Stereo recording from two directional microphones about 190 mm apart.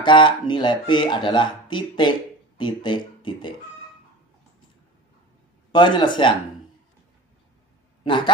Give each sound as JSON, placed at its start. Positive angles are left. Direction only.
{"t": 0.0, "sound": "speech", "side_deg": 25}
{"t": 5.7, "sound": "speech", "side_deg": 25}